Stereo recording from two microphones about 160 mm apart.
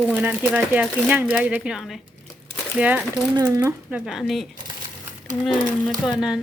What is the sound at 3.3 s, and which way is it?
A woman's voice, 20° right (ahead or behind).